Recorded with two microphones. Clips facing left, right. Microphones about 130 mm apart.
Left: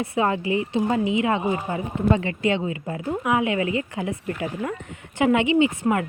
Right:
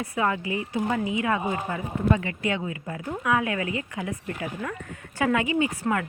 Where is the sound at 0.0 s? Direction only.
25° left (ahead or behind).